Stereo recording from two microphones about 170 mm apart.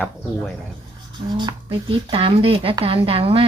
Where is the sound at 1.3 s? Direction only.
25° right (ahead or behind).